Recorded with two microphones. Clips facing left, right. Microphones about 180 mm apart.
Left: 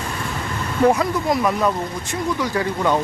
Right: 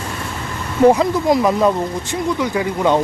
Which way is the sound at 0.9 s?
25° right (ahead or behind).